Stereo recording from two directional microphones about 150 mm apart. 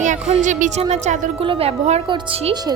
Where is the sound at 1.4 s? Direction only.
40° right (ahead or behind).